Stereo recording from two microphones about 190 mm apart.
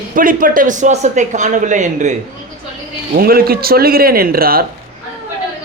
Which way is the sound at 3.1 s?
50° right (ahead or behind).